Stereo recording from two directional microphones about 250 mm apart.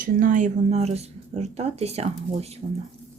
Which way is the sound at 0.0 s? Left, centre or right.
Right.